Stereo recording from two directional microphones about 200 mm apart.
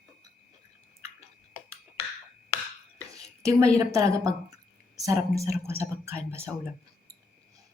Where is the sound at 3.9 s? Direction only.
15° right (ahead or behind).